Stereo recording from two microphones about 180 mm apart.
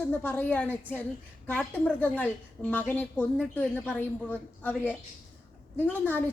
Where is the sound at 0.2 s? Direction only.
10° left (ahead or behind).